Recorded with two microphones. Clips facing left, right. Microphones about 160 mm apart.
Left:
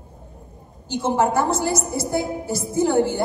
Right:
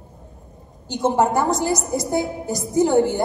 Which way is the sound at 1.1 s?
15° right (ahead or behind).